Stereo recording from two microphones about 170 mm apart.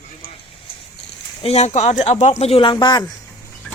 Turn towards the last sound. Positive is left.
turn(degrees=25)  # may be behind; listen again after turning